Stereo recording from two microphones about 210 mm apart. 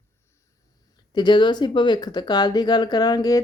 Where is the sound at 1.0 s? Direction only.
20° left (ahead or behind).